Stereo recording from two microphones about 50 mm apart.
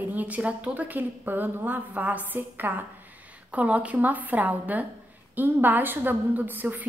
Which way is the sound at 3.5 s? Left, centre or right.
Right.